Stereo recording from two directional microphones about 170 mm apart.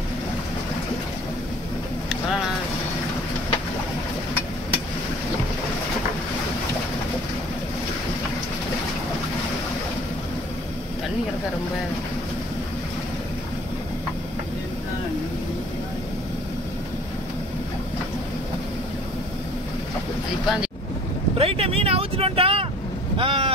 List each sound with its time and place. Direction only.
21.4 s vehicle: 35° right (ahead or behind)
23.1 s boat: 30° right (ahead or behind)